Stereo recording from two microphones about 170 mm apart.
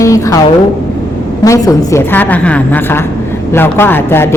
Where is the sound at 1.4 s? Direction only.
20° left (ahead or behind).